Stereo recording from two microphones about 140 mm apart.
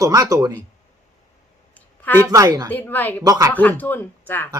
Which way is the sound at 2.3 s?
25° right (ahead or behind).